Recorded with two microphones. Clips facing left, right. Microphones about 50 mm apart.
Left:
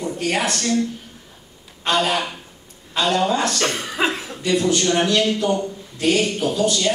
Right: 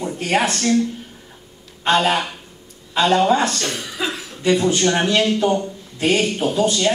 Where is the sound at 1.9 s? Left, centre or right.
Right.